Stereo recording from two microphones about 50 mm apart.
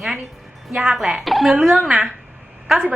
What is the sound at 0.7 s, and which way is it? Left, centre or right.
Speech, centre.